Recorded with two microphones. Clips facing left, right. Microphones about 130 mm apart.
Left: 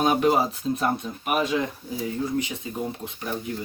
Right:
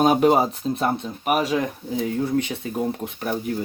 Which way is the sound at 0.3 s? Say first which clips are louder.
Right 3 dB; 30° right (ahead or behind).